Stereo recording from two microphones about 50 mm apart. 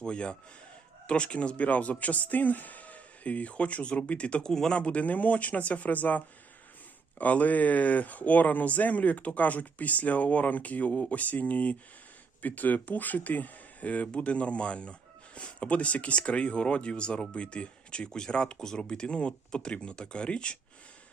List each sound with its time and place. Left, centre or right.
0.0 s speech: left
4.4 s speech: centre
4.7 s speech: left